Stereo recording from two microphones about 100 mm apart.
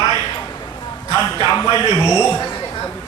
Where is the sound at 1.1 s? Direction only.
45° left (ahead or behind).